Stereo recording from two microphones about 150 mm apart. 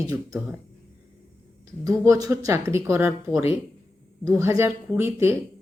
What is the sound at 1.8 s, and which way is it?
Speech, 25° right (ahead or behind).